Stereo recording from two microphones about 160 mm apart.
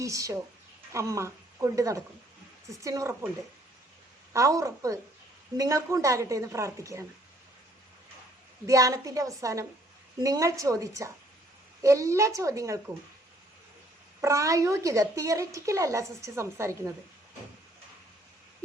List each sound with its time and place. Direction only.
0.0 s speech: 20° right (ahead or behind)
4.3 s speech: 20° right (ahead or behind)
8.6 s speech: 20° right (ahead or behind)
14.2 s speech: 20° right (ahead or behind)